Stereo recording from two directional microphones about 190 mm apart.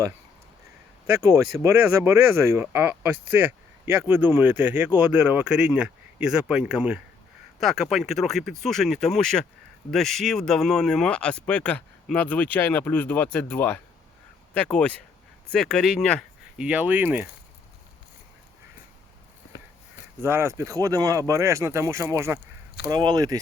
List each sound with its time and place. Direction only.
1.2 s speech: 15° right (ahead or behind)
20.2 s speech: 15° right (ahead or behind)